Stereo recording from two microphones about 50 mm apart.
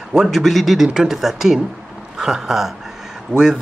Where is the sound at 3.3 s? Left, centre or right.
Right.